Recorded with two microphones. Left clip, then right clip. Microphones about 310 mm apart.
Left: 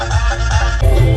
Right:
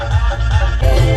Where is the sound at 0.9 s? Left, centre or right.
Centre.